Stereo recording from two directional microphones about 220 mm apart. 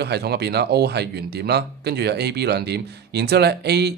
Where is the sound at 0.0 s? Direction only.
45° right (ahead or behind).